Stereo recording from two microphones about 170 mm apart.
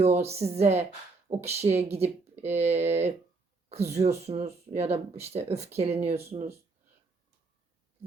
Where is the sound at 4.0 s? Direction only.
40° right (ahead or behind).